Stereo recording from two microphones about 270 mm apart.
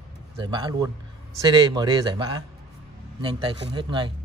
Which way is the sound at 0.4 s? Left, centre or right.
Centre.